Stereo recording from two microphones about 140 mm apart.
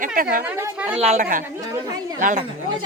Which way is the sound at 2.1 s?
65° right (ahead or behind).